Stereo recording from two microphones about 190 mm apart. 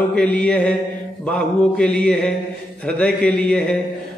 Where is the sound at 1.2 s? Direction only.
5° left (ahead or behind).